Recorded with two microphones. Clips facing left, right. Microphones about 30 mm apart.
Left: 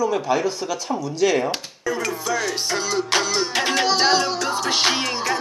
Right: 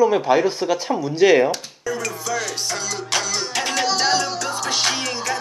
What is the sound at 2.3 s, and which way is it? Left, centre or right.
Music, centre.